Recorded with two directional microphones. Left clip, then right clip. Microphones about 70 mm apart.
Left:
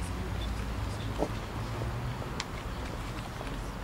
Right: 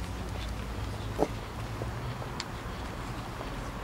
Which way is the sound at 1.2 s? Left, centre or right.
Right.